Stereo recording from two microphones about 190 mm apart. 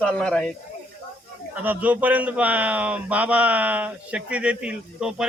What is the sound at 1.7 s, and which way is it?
A man's voice, 10° right (ahead or behind).